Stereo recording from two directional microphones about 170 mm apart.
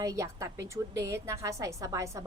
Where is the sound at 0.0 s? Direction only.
20° right (ahead or behind).